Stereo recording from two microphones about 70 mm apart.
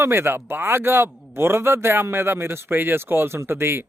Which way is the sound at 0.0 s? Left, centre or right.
Right.